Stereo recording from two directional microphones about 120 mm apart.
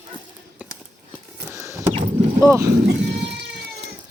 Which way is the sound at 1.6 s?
25° right (ahead or behind).